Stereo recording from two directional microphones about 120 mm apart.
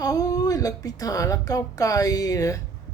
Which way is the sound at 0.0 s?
30° left (ahead or behind).